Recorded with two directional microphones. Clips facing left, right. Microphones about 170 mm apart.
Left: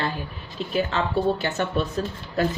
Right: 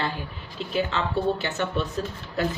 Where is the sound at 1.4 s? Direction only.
40° left (ahead or behind).